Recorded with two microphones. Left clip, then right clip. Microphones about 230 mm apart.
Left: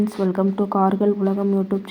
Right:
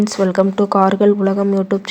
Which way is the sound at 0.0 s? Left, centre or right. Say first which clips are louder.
Right 7 dB; right.